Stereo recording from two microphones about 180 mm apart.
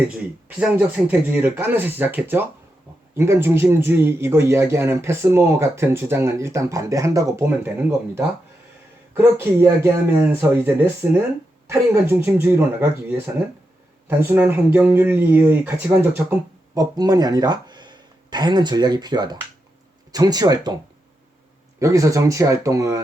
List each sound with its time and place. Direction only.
0.4 s speech: 10° right (ahead or behind)
16.7 s speech: 20° right (ahead or behind)
21.8 s speech: 15° right (ahead or behind)